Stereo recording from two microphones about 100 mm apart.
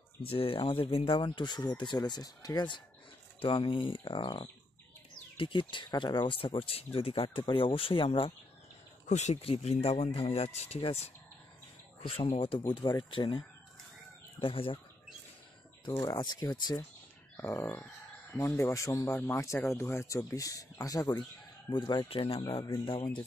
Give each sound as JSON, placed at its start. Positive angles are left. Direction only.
{"t": 0.3, "sound": "speech", "side_deg": 70}
{"t": 3.3, "sound": "speech", "side_deg": 60}
{"t": 9.3, "sound": "speech", "side_deg": 85}
{"t": 12.1, "sound": "speech", "side_deg": 70}
{"t": 14.4, "sound": "speech", "side_deg": 60}
{"t": 16.0, "sound": "speech", "side_deg": 40}
{"t": 17.4, "sound": "speech", "side_deg": 25}
{"t": 22.1, "sound": "speech", "side_deg": 65}